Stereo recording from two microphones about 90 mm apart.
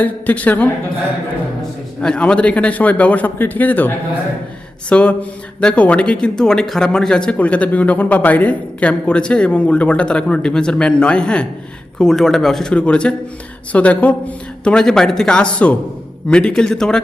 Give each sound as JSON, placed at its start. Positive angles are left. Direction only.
{"t": 0.0, "sound": "a man's voice", "side_deg": 20}
{"t": 2.0, "sound": "a man's voice", "side_deg": 10}